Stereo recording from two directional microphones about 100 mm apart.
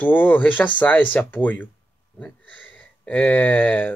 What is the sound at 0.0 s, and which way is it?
Speech, 15° left (ahead or behind).